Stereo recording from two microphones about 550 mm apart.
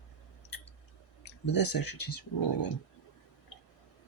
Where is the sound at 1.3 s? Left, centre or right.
Left.